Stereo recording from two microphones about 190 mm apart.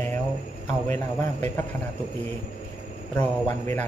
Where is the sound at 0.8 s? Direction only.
15° left (ahead or behind).